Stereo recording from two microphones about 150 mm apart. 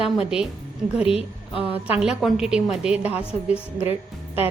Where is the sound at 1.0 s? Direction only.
40° left (ahead or behind).